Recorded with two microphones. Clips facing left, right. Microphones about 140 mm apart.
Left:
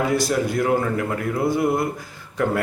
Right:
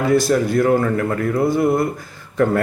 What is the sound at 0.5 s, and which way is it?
Speech, 15° left (ahead or behind).